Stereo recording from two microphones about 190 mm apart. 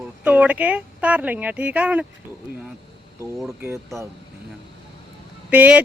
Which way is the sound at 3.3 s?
Centre (ahead or behind).